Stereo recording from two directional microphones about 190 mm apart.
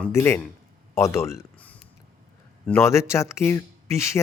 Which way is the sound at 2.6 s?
10° left (ahead or behind).